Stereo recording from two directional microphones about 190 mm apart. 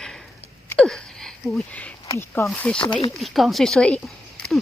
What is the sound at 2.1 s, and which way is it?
Snake, 15° left (ahead or behind).